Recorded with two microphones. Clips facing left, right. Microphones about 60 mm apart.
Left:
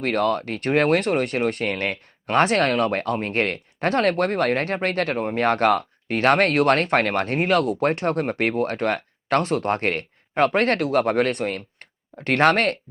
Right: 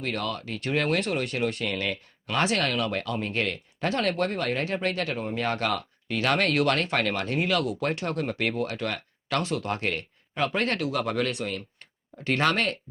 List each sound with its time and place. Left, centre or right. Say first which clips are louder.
0.0 s speech: left 9 dB; left